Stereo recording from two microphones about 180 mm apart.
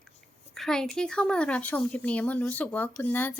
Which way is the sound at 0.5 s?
Centre (ahead or behind).